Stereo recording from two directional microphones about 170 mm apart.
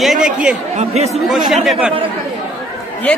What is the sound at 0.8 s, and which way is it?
Speech, 40° right (ahead or behind).